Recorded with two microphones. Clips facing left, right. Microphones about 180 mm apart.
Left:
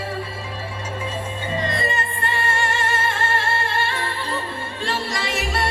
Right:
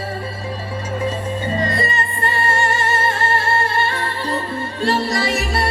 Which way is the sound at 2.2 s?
40° right (ahead or behind).